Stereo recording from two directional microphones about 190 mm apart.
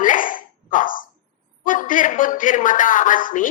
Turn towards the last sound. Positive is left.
turn(degrees=45)  # may be behind; listen again after turning